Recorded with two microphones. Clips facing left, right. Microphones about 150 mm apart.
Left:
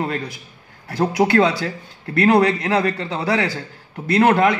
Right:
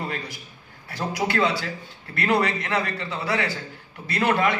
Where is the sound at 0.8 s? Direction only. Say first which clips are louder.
Left 9 dB; 50° left (ahead or behind).